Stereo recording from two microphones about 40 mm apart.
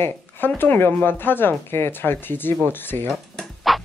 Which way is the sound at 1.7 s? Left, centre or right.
Left.